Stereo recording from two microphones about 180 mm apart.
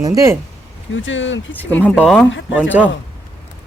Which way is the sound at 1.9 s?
Centre (ahead or behind).